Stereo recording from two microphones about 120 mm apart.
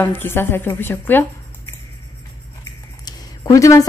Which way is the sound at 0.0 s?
20° left (ahead or behind).